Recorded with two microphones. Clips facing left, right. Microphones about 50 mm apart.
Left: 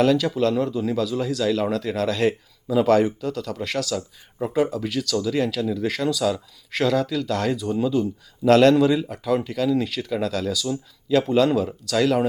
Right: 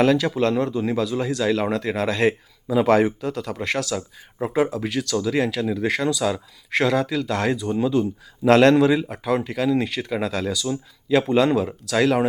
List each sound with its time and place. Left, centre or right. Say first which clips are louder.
0.0 s speech: right 1 dB; centre
0.3 s speech: right 1 dB; right; by 8.1 s centre
8.4 s speech: right 1 dB; right